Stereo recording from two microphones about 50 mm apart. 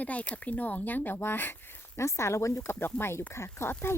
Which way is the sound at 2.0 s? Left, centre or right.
Left.